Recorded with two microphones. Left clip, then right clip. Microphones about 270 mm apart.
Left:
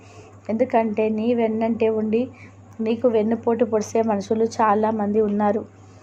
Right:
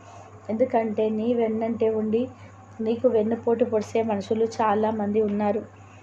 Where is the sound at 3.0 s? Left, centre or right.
Centre.